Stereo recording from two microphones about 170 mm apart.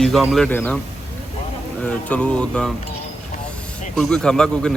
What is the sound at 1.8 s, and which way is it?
Speech, 10° left (ahead or behind).